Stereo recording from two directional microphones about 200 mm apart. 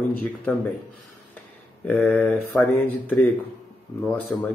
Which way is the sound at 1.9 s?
5° left (ahead or behind).